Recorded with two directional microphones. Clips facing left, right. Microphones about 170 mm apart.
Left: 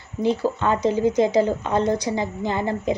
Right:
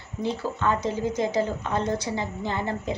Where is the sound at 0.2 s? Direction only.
20° left (ahead or behind).